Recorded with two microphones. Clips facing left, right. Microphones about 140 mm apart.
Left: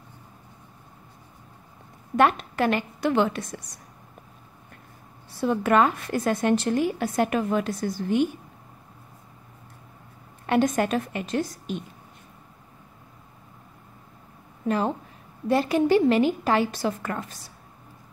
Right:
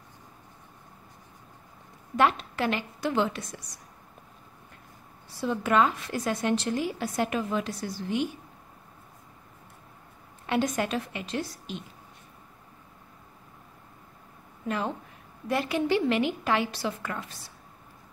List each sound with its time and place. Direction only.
2.1 s a woman's voice: 55° left (ahead or behind)
5.4 s a woman's voice: 55° left (ahead or behind)
10.4 s a woman's voice: 50° left (ahead or behind)
14.7 s a woman's voice: 35° left (ahead or behind)